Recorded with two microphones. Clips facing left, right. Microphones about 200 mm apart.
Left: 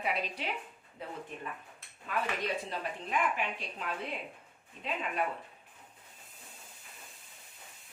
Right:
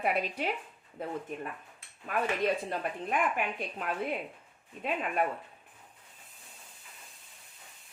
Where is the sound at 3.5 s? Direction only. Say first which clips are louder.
Right 5 dB; 55° right (ahead or behind).